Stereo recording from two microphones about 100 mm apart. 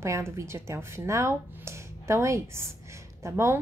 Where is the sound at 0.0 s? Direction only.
30° right (ahead or behind).